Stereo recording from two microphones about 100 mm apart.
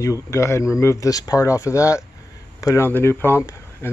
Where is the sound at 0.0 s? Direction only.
30° left (ahead or behind).